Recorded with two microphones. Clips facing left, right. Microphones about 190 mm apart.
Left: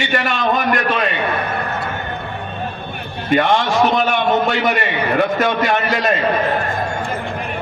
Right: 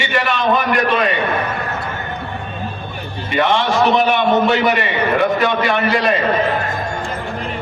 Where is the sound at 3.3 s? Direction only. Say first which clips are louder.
Left 1 dB; 45° left (ahead or behind).